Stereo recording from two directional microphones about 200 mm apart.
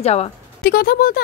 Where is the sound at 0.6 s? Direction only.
50° left (ahead or behind).